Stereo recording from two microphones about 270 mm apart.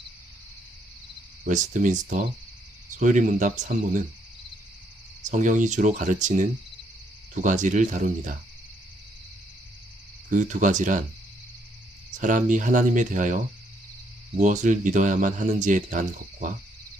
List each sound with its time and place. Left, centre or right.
1.5 s speech: right
5.3 s speech: right
10.2 s speech: right
12.2 s speech: right